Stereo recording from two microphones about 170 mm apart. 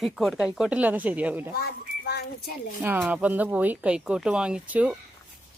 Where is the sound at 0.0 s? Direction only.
Centre (ahead or behind).